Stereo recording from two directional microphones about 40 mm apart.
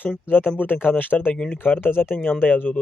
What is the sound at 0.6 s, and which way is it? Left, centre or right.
Speech, left.